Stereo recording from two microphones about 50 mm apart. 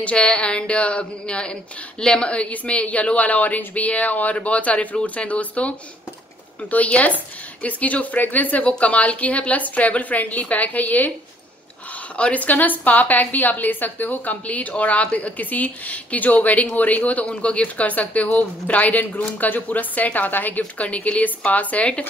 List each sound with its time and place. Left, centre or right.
0.0 s speech: left
12.2 s speech: left